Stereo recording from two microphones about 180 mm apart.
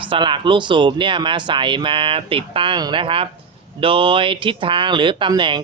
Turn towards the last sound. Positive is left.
turn(degrees=-25)  # may be behind; listen again after turning